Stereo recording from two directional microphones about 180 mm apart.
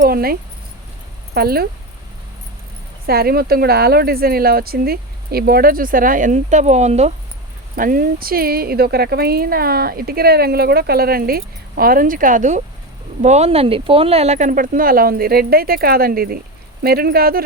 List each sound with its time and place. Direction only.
0.0 s speech: 55° right (ahead or behind)
3.1 s speech: 60° right (ahead or behind); by 7.1 s 40° right (ahead or behind)
7.8 s speech: 50° right (ahead or behind)